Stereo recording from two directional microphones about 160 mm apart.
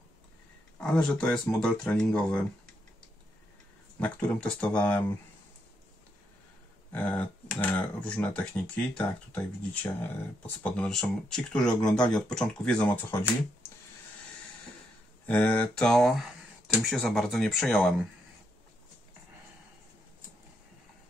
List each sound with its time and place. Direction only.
0.7 s speech: 5° left (ahead or behind)
4.0 s speech: 5° left (ahead or behind)
6.9 s speech: 10° left (ahead or behind)
15.2 s speech: 10° left (ahead or behind)